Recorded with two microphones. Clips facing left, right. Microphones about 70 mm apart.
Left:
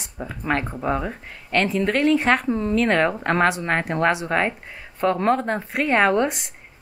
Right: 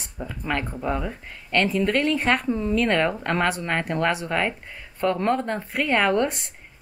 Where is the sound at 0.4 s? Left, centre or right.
Left.